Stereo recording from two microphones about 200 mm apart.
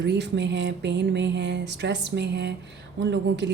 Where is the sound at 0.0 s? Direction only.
60° right (ahead or behind).